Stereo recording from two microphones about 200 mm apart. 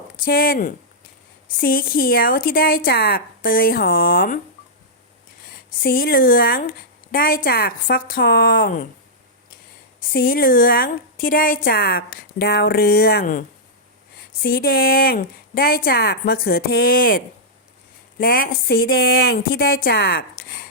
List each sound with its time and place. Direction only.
0.3 s a woman's voice: 45° left (ahead or behind)
5.8 s a woman's voice: 50° left (ahead or behind)
10.0 s a woman's voice: 45° left (ahead or behind)
14.4 s a woman's voice: 45° left (ahead or behind)